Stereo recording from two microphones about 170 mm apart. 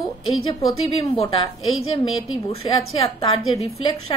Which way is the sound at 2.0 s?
35° left (ahead or behind).